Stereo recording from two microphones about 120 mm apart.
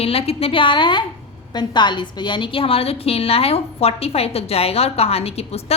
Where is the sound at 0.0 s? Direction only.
55° left (ahead or behind).